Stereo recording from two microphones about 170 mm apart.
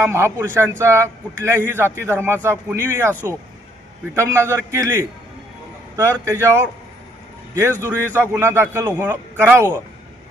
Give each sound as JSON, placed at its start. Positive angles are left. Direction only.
{"t": 0.0, "sound": "a man's voice", "side_deg": -15}
{"t": 3.1, "sound": "speech", "side_deg": 10}
{"t": 4.1, "sound": "a man's voice", "side_deg": -15}
{"t": 8.1, "sound": "a man's voice", "side_deg": -15}